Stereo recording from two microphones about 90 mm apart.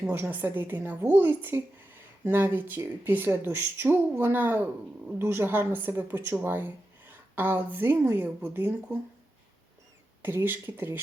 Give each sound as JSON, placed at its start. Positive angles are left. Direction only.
{"t": 0.1, "sound": "a woman's voice", "side_deg": -25}
{"t": 10.2, "sound": "a woman's voice", "side_deg": -25}